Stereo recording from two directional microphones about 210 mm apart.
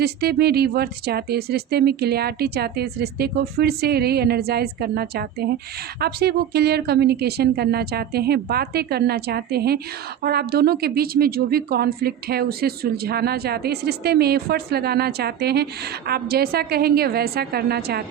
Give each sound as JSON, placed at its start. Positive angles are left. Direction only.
{"t": 0.0, "sound": "speech", "side_deg": -50}